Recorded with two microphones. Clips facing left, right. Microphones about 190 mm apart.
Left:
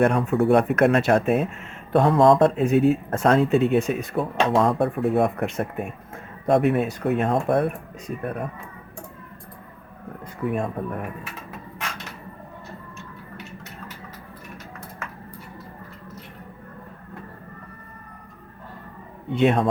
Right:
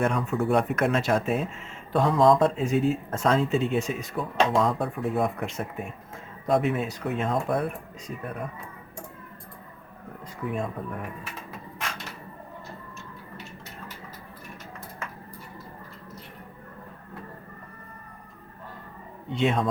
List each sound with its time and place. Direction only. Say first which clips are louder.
0.0 s speech: left 6 dB; 60° left (ahead or behind)
10.5 s speech: left 3 dB; 60° left (ahead or behind)
19.3 s speech: left 5 dB; 60° left (ahead or behind)